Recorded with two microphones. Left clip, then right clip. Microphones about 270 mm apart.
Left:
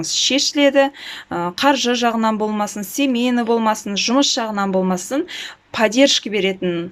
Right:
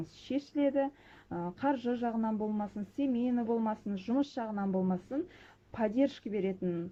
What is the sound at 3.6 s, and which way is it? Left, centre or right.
Speech, centre.